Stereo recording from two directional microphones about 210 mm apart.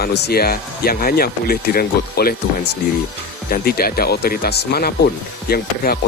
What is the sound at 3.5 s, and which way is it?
Speech, 45° left (ahead or behind).